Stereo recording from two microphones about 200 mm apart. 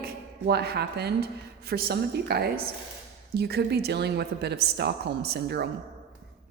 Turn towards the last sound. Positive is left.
turn(degrees=-50)  # may be behind; listen again after turning